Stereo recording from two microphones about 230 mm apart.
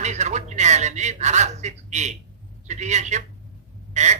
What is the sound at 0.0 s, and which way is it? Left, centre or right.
A man's voice, right.